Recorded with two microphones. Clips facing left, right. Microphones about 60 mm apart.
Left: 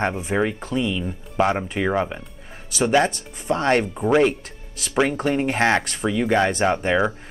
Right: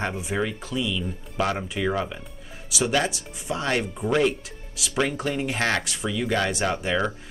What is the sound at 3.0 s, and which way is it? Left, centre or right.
Speech, left.